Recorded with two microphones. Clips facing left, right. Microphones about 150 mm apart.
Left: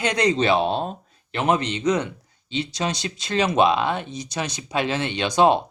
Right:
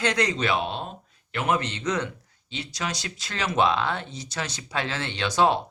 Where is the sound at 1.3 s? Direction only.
25° left (ahead or behind).